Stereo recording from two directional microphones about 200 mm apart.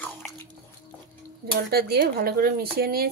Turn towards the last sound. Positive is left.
turn(degrees=-50)  # may be behind; listen again after turning